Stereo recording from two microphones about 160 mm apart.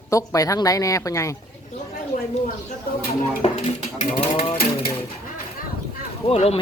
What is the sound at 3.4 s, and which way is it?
Speech, 40° left (ahead or behind).